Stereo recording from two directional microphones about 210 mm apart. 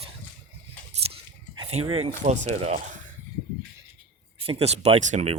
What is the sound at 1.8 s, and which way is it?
Speech, 30° right (ahead or behind).